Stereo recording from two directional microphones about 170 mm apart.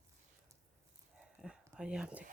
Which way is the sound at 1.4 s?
5° right (ahead or behind).